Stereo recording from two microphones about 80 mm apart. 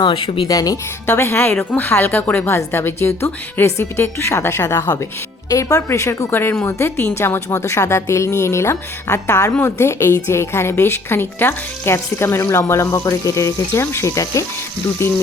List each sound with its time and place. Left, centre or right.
0.0 s speech: left
0.4 s speech: left
1.0 s speech: left